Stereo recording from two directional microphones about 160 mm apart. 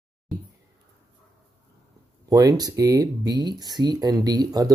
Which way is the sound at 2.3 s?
25° right (ahead or behind).